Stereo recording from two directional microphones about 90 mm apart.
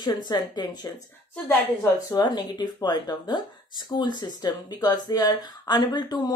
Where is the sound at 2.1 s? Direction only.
50° left (ahead or behind).